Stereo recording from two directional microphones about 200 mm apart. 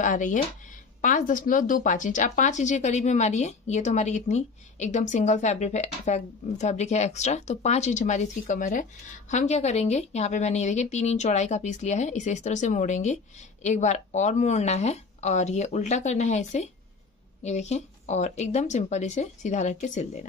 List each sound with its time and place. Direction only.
0.0 s speech: 40° left (ahead or behind)